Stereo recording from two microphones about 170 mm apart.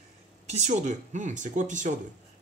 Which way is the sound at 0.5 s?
40° right (ahead or behind).